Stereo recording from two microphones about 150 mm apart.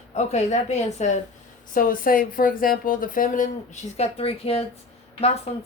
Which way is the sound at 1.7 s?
65° left (ahead or behind).